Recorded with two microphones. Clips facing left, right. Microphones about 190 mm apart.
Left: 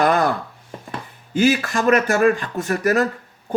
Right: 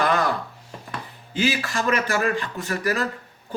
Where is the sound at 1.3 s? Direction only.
50° left (ahead or behind).